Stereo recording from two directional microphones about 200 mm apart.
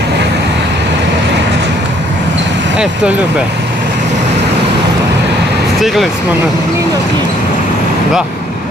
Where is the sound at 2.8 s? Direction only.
5° right (ahead or behind).